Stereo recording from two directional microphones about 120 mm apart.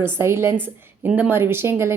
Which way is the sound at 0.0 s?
20° right (ahead or behind).